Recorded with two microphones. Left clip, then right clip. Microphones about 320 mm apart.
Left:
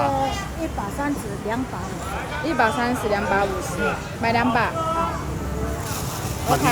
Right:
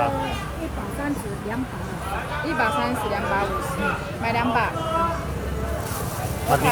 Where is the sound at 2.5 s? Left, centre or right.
Left.